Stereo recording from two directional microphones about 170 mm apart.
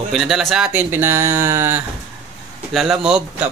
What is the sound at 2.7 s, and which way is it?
Speech, centre (ahead or behind).